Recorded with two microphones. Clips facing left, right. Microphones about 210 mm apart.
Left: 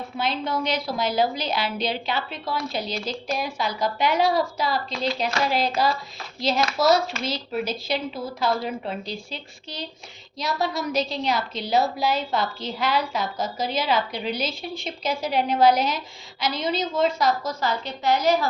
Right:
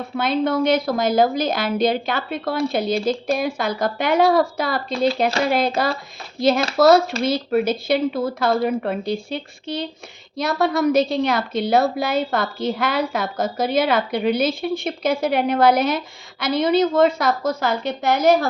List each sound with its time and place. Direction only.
0.2 s a woman's voice: 55° right (ahead or behind)